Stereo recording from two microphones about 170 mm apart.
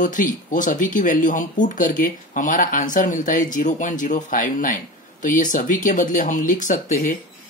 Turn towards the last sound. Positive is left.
turn(degrees=50)  # may be behind; listen again after turning